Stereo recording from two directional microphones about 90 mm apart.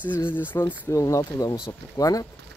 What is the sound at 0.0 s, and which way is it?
Speech, 20° left (ahead or behind).